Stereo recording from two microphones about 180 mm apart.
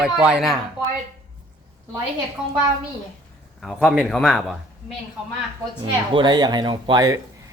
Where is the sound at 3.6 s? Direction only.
Centre (ahead or behind).